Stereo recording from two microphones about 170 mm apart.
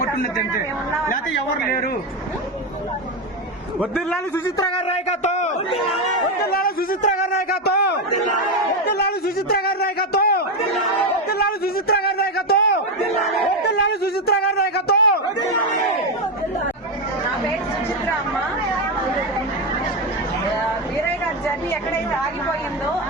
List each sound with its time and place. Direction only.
3.8 s a man's voice: centre (ahead or behind)
4.4 s a man's voice: 25° left (ahead or behind)
4.9 s a man's voice: 40° left (ahead or behind)
6.4 s speech: 60° left (ahead or behind)
7.6 s a sound: 70° left (ahead or behind)